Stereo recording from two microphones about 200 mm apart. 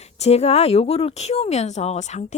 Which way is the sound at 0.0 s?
30° left (ahead or behind).